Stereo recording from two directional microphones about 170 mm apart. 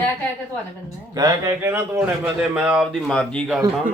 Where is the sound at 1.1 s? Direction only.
20° right (ahead or behind); by 3.4 s 5° left (ahead or behind).